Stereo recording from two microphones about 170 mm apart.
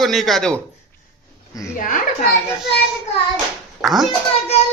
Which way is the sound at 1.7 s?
50° left (ahead or behind).